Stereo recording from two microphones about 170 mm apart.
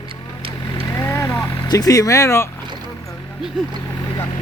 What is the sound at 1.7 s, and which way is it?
Speech, 20° left (ahead or behind).